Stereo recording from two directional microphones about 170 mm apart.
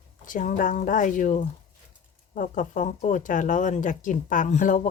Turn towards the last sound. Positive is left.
turn(degrees=45)  # may be behind; listen again after turning